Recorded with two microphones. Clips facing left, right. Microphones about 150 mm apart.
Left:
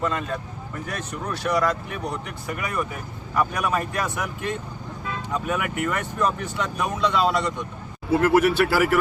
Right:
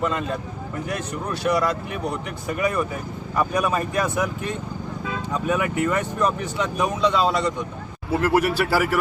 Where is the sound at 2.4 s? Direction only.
25° right (ahead or behind).